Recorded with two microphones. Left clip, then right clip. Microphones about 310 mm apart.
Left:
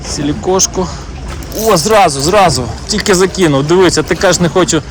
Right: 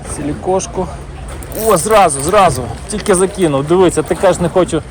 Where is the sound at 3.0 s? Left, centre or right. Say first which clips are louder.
Left 2 dB; centre.